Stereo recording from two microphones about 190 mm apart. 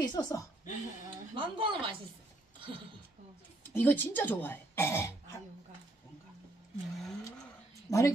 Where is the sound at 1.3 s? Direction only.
25° right (ahead or behind).